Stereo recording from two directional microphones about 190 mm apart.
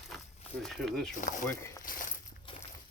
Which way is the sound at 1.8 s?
45° left (ahead or behind).